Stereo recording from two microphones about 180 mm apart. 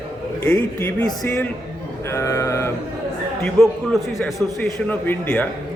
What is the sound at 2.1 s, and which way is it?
Sheep, 15° left (ahead or behind).